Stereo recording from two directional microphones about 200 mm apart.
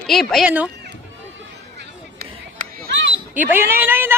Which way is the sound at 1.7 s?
50° right (ahead or behind).